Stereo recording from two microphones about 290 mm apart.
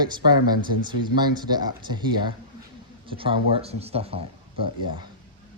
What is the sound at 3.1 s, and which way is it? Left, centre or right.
Speech, centre.